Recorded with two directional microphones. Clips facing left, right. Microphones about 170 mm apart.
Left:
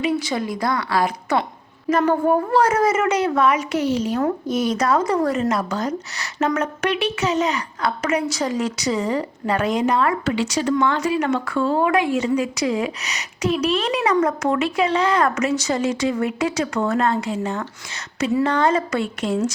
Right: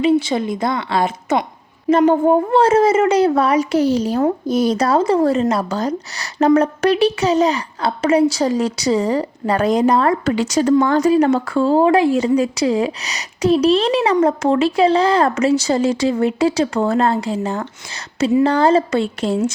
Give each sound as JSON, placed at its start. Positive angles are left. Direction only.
{"t": 0.0, "sound": "a woman's voice", "side_deg": -25}